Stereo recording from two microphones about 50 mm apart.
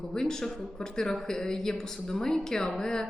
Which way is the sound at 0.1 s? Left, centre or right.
Centre.